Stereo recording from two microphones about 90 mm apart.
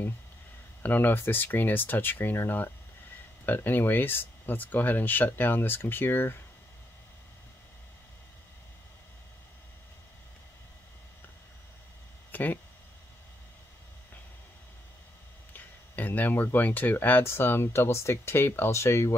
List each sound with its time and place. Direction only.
0.8 s speech: 20° left (ahead or behind)
12.3 s a sound: 20° left (ahead or behind)
15.5 s speech: 20° left (ahead or behind)